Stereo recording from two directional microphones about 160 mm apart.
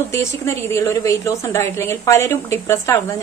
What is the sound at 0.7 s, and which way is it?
A woman's voice, 15° left (ahead or behind).